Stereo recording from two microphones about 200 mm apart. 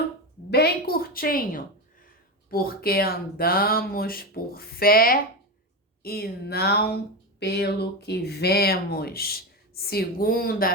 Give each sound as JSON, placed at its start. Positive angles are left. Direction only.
{"t": 0.5, "sound": "speech", "side_deg": 50}